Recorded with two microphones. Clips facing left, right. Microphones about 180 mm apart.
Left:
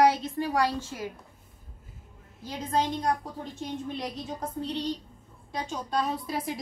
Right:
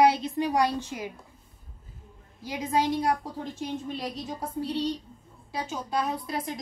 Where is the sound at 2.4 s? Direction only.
10° right (ahead or behind).